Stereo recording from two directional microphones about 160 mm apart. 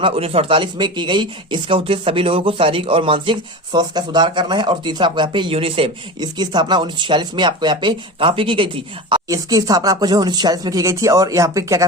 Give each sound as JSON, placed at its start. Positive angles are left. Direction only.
{"t": 0.0, "sound": "speech", "side_deg": -35}